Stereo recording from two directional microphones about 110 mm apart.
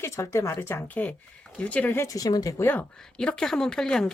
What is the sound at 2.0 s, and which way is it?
Speech, 35° left (ahead or behind).